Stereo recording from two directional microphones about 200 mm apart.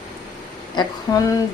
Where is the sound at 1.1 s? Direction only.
15° left (ahead or behind).